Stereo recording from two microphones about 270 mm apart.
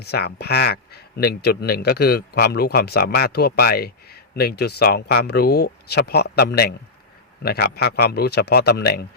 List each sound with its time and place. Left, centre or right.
0.0 s a man's voice: left